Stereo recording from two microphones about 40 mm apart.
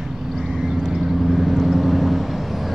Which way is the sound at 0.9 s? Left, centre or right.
Centre.